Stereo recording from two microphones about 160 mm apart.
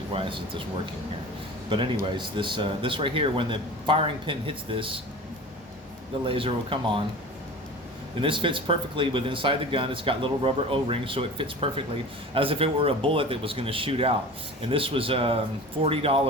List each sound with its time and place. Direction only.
0.1 s speech: 35° right (ahead or behind)
1.7 s speech: 30° right (ahead or behind)
6.2 s speech: 35° right (ahead or behind)
8.2 s speech: 30° right (ahead or behind)